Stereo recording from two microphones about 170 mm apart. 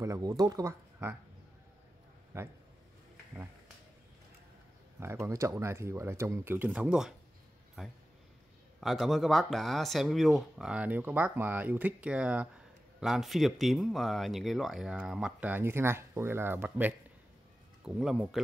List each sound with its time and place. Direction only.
0.0 s speech: 20° right (ahead or behind)
2.3 s speech: 15° right (ahead or behind)
5.0 s speech: 15° right (ahead or behind)